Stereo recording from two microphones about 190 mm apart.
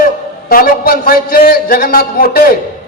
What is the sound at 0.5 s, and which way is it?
A man's voice, 50° left (ahead or behind).